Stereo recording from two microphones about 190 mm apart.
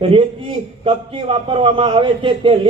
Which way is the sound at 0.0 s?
25° right (ahead or behind).